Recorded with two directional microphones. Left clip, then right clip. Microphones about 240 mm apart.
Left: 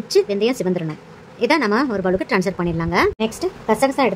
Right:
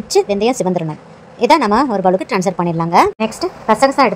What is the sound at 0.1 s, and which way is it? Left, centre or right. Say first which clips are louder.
A woman's voice: right 3 dB; centre.